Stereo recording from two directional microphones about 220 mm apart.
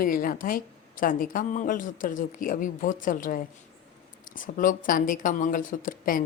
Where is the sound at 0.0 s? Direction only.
40° left (ahead or behind).